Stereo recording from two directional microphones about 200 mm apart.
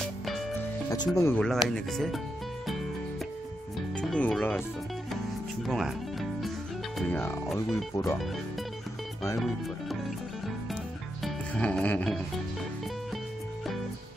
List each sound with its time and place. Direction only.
0.2 s music: centre (ahead or behind)
0.8 s speech: 20° left (ahead or behind)
1.4 s speech: centre (ahead or behind)
3.9 s speech: 5° left (ahead or behind)
5.1 s music: centre (ahead or behind)
7.0 s speech: 10° left (ahead or behind)
9.4 s speech: centre (ahead or behind)
11.2 s music: 5° left (ahead or behind)